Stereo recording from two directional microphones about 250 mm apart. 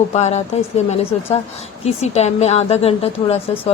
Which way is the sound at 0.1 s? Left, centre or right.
Left.